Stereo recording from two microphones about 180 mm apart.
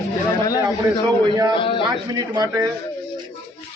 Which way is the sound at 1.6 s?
30° left (ahead or behind).